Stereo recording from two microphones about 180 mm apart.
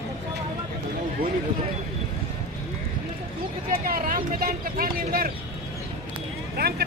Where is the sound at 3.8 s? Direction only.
50° right (ahead or behind).